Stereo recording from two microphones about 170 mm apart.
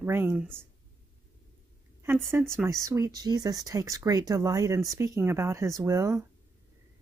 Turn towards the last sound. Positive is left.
turn(degrees=-20)  # may be behind; listen again after turning